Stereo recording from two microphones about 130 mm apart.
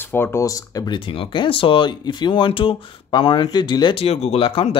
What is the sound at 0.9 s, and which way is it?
Speech, 40° left (ahead or behind).